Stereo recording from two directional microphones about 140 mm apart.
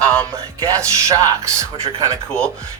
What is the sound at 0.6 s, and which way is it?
Speech, 20° right (ahead or behind).